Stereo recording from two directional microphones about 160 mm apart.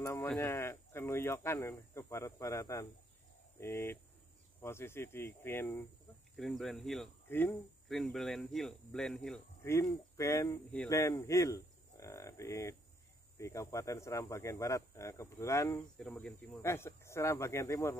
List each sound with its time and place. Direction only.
0.0 s a sound: 15° left (ahead or behind)
0.4 s speech: 15° left (ahead or behind)
6.3 s speech: centre (ahead or behind)
7.2 s speech: 15° left (ahead or behind)
7.9 s speech: centre (ahead or behind)
9.6 s speech: 20° left (ahead or behind)
16.0 s speech: 5° left (ahead or behind)
16.6 s speech: 15° left (ahead or behind)